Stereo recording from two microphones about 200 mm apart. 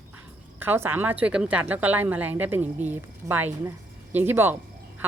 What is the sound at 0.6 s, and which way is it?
A woman's voice, 10° right (ahead or behind).